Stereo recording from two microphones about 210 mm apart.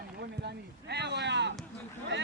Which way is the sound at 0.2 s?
50° right (ahead or behind).